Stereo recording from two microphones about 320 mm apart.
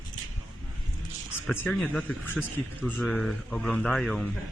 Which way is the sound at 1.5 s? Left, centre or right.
Centre.